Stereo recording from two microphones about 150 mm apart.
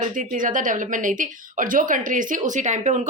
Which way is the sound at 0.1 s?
60° right (ahead or behind).